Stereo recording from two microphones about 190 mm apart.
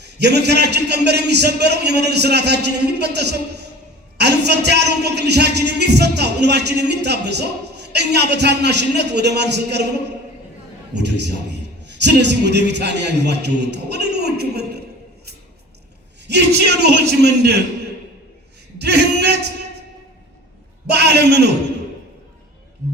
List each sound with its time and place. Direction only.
0.0 s a man's voice: 60° right (ahead or behind)
10.9 s a man's voice: 65° right (ahead or behind)
16.2 s a man's voice: 65° right (ahead or behind)
18.8 s a sound: 60° right (ahead or behind)
20.8 s a man's voice: 60° right (ahead or behind)